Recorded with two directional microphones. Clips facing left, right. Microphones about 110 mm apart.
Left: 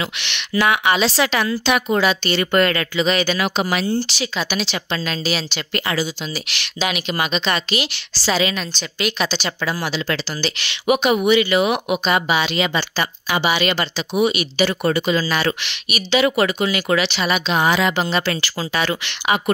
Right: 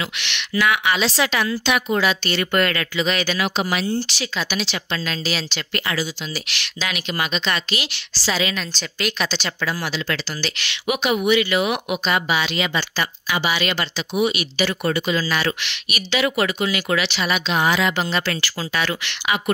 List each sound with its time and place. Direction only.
0.0 s speech: 30° left (ahead or behind)
3.3 s speech: 45° left (ahead or behind)
4.1 s speech: 20° left (ahead or behind)
9.0 s a woman's voice: 10° left (ahead or behind)
13.9 s speech: 35° left (ahead or behind)